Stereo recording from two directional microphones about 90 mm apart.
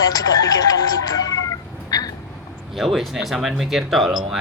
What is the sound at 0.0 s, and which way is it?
Speech, 45° left (ahead or behind).